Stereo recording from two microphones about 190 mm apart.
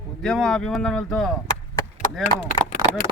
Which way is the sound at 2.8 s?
20° right (ahead or behind).